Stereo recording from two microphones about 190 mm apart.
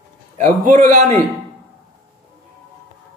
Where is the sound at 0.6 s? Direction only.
45° right (ahead or behind).